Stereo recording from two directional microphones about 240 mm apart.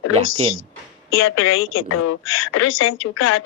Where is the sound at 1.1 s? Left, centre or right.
Left.